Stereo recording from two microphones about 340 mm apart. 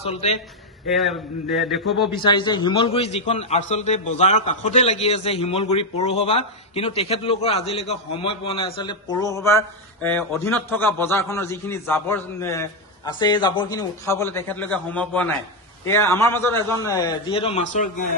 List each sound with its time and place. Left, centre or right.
0.8 s a man's voice: centre
2.1 s a man's voice: centre